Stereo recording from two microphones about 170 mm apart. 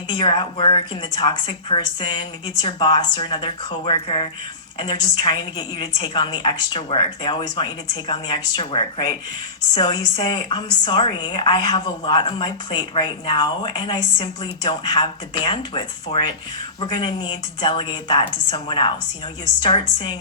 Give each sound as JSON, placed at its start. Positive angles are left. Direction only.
{"t": 0.1, "sound": "a woman's voice", "side_deg": 30}